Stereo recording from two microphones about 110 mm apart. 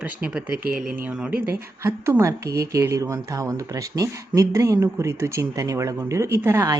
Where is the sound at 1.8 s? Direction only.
25° right (ahead or behind).